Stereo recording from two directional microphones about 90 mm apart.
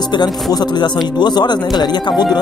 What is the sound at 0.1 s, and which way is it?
Speech, 55° left (ahead or behind).